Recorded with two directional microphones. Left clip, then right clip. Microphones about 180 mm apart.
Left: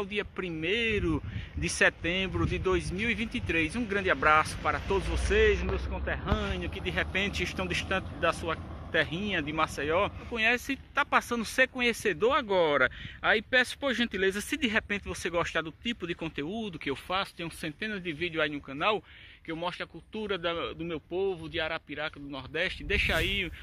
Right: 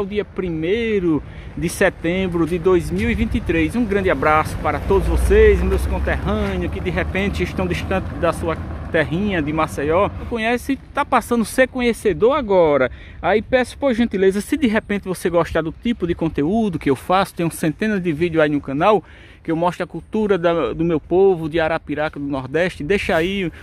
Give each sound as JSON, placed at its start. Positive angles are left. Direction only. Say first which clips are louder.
{"t": 0.0, "sound": "speech", "louder": "right 10 dB", "side_deg": -5}